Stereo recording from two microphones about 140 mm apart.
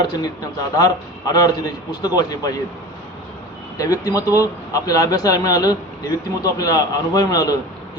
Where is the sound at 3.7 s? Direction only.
25° left (ahead or behind).